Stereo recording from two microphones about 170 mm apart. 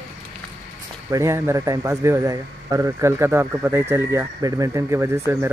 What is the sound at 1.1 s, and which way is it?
A man's voice, 15° right (ahead or behind).